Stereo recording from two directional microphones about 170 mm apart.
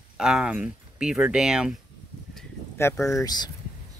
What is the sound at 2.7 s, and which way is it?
Speech, 15° left (ahead or behind).